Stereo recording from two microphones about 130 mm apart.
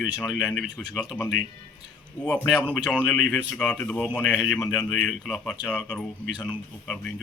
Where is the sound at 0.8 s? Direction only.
5° left (ahead or behind).